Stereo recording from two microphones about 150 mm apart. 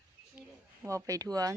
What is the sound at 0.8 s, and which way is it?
Speech, 20° right (ahead or behind).